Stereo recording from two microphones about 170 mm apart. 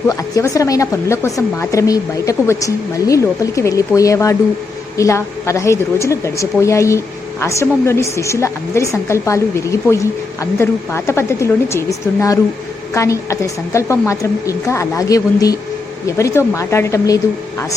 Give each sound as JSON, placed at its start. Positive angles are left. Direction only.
{"t": 0.1, "sound": "a woman's voice", "side_deg": 20}